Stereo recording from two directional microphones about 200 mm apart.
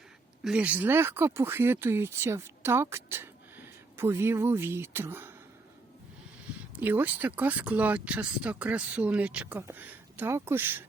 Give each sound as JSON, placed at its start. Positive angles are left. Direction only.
{"t": 0.4, "sound": "speech", "side_deg": -5}
{"t": 6.7, "sound": "speech", "side_deg": -10}